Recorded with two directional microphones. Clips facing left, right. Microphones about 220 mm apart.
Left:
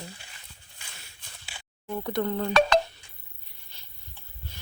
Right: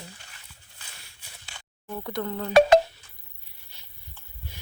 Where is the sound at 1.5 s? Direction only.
5° left (ahead or behind).